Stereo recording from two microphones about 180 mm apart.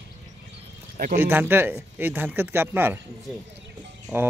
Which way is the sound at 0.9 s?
50° right (ahead or behind).